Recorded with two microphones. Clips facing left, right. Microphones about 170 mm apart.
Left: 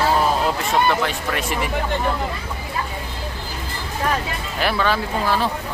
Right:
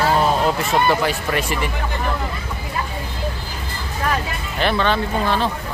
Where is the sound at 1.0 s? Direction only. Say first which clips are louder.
Right 2 dB; 5° right (ahead or behind).